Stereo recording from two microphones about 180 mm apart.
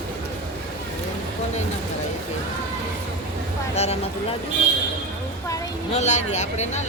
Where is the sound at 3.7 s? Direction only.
35° left (ahead or behind).